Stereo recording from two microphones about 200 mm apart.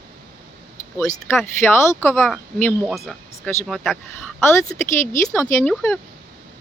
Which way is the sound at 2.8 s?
Centre (ahead or behind).